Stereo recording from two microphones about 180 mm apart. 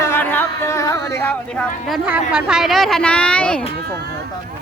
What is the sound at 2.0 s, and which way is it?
Speech, 5° right (ahead or behind).